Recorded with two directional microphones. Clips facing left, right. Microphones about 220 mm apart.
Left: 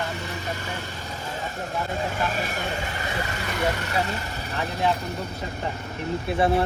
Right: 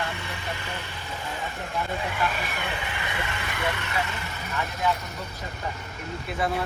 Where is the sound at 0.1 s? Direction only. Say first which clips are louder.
Left 3 dB; 40° left (ahead or behind).